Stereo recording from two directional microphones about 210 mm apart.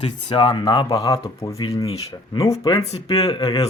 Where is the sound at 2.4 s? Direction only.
25° left (ahead or behind).